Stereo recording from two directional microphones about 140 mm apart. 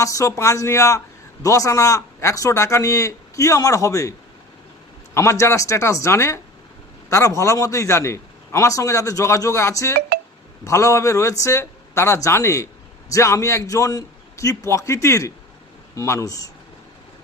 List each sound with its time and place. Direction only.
0.0 s a man's voice: 25° left (ahead or behind)
5.1 s a man's voice: 20° left (ahead or behind)